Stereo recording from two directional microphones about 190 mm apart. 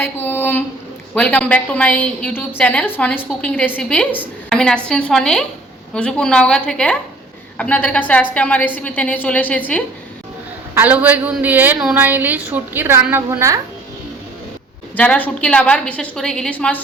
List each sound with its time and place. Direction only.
0.0 s a woman's voice: 10° left (ahead or behind)
10.8 s a woman's voice: 10° right (ahead or behind)
14.9 s a woman's voice: 5° left (ahead or behind)